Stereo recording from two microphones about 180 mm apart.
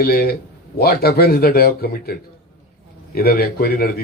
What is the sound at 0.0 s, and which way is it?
A man's voice, 60° left (ahead or behind).